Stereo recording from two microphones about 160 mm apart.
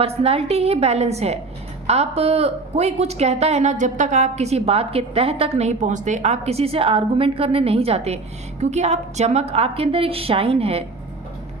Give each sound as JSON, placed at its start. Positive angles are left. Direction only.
{"t": 0.0, "sound": "a woman's voice", "side_deg": -40}